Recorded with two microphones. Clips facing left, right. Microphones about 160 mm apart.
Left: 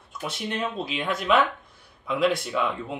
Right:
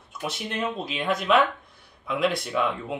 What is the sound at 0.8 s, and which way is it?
Speech, centre (ahead or behind).